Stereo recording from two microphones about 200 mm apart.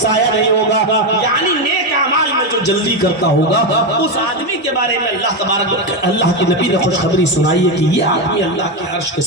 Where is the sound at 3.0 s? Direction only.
60° left (ahead or behind).